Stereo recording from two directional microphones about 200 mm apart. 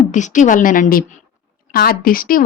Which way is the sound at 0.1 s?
40° left (ahead or behind).